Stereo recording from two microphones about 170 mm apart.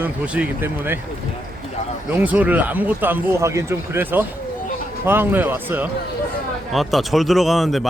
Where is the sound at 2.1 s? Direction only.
10° right (ahead or behind).